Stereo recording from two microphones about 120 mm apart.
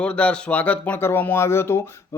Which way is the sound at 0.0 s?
10° left (ahead or behind).